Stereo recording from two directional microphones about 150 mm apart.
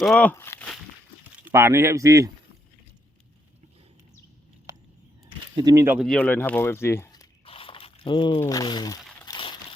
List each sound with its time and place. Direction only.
0.0 s speech: 5° left (ahead or behind)
1.5 s speech: 15° right (ahead or behind)
5.5 s speech: 25° right (ahead or behind)
6.0 s speech: 5° left (ahead or behind)
7.4 s a sound: 35° left (ahead or behind)
8.4 s speech: 25° left (ahead or behind)
9.2 s a sound: 30° left (ahead or behind)